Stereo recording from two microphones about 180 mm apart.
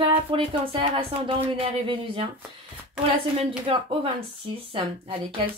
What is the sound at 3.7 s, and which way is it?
Speech, 30° right (ahead or behind).